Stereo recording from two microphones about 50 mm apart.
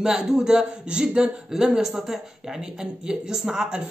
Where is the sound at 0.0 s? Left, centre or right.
Centre.